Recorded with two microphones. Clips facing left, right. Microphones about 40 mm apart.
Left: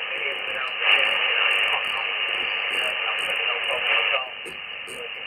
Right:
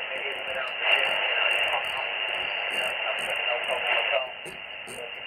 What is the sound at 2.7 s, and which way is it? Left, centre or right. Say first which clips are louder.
Radio: left 3 dB; left.